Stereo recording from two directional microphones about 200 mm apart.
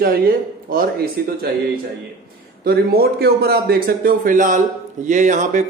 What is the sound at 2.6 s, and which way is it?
A man's voice, 50° right (ahead or behind).